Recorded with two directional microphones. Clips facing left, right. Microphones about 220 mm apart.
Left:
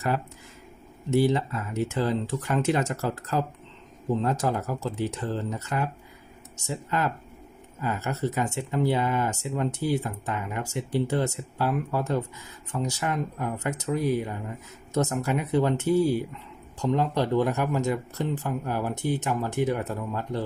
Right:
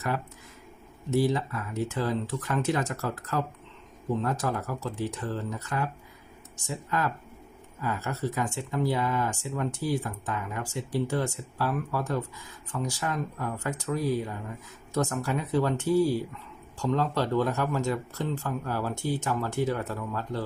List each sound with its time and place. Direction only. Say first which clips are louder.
1.1 s speech: left 3 dB; 25° left (ahead or behind)